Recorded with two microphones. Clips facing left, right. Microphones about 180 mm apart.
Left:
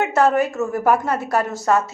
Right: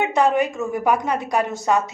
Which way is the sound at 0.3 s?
15° right (ahead or behind).